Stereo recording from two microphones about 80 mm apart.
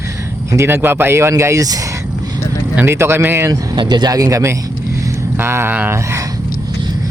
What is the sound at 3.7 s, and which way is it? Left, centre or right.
Speech, right.